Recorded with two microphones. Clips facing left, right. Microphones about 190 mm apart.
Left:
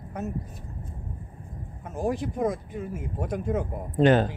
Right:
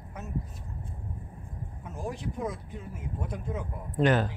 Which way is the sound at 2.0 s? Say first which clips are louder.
Left 8 dB; 90° left.